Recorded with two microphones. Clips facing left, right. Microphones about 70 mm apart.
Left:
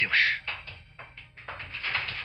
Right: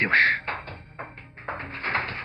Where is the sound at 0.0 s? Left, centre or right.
Right.